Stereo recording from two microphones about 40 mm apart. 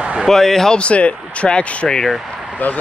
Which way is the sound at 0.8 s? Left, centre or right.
Left.